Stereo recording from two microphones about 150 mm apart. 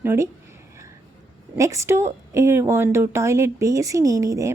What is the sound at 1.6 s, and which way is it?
A woman's voice, 20° right (ahead or behind).